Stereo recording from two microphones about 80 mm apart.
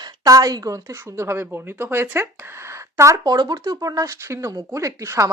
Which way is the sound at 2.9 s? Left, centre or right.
Right.